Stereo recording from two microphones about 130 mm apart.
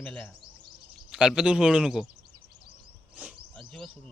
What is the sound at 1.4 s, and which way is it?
Speech, 5° right (ahead or behind).